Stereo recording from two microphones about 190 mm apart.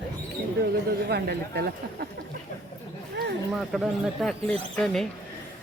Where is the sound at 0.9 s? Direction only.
60° right (ahead or behind).